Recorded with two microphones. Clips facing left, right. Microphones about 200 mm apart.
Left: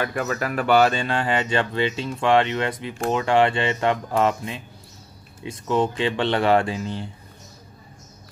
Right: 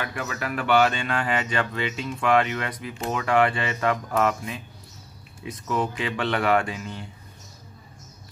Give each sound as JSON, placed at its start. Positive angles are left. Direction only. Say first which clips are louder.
{"t": 0.0, "sound": "speech", "louder": "left 6 dB", "side_deg": 40}